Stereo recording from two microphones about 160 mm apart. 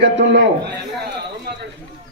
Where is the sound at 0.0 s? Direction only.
90° right.